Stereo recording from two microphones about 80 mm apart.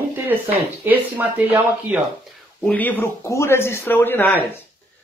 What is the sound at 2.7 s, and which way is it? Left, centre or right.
Speech, left.